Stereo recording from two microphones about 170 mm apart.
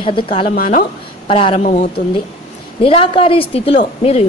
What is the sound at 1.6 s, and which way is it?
Speech, 45° left (ahead or behind).